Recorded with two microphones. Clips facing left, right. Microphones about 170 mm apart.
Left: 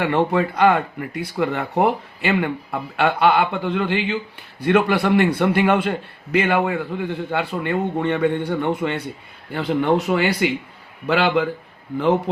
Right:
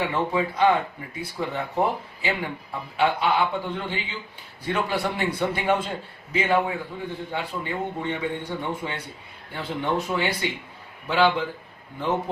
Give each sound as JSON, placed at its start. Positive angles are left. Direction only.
{"t": 0.0, "sound": "a man's voice", "side_deg": 65}